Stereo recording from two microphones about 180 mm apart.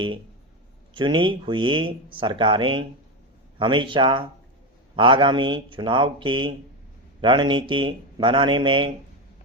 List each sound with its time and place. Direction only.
0.9 s speech: 25° right (ahead or behind)